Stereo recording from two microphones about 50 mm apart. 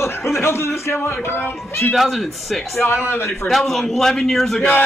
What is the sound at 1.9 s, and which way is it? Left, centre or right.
Speech, centre.